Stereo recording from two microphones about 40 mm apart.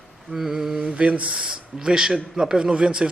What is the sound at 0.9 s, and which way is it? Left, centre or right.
A man's voice, right.